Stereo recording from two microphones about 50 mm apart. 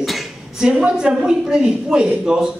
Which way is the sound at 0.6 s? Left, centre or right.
Centre.